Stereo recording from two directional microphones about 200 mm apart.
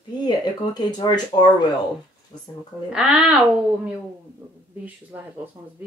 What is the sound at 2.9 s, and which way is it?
A woman's voice, 5° right (ahead or behind).